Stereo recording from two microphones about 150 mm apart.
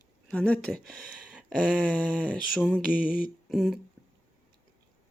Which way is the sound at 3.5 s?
Centre (ahead or behind).